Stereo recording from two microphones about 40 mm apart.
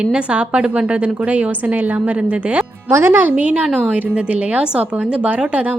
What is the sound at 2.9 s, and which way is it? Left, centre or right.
Speech, right.